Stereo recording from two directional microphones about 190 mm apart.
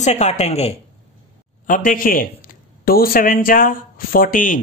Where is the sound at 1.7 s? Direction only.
45° left (ahead or behind).